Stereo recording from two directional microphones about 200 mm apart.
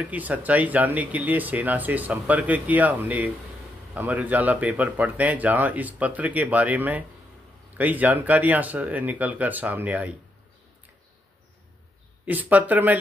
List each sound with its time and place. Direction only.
0.0 s speech: 10° right (ahead or behind)
12.3 s speech: 10° right (ahead or behind)